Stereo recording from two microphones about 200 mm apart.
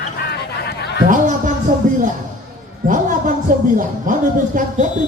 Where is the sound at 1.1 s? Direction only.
40° right (ahead or behind).